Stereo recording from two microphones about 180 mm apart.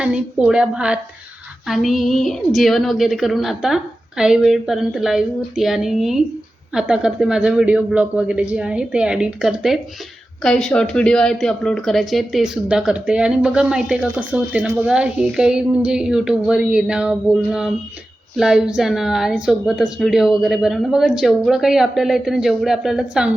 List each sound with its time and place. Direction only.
0.0 s speech: 5° right (ahead or behind)